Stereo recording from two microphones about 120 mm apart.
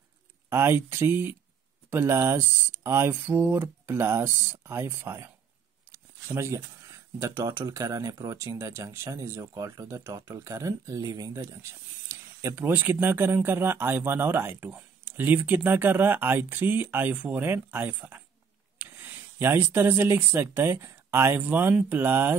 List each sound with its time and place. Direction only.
0.5 s speech: 20° right (ahead or behind)
6.3 s speech: 25° right (ahead or behind)